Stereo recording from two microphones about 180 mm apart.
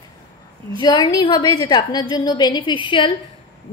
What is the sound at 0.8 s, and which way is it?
A woman's voice, 20° left (ahead or behind).